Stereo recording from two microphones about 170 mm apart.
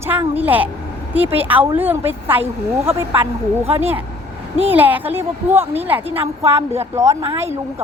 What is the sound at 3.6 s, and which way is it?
Speech, 35° right (ahead or behind).